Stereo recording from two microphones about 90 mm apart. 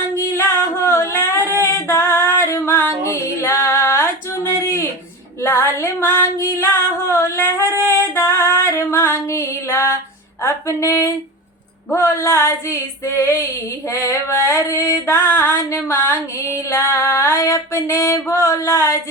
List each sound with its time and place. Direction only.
0.3 s singing: 25° left (ahead or behind)
1.6 s female singing: 25° left (ahead or behind)
4.6 s a sound: 30° left (ahead or behind)
5.4 s female singing: 25° left (ahead or behind)
6.3 s singing: 30° left (ahead or behind)
9.2 s music: 30° left (ahead or behind)
10.4 s a sound: 30° left (ahead or behind)
11.9 s female singing: 30° left (ahead or behind)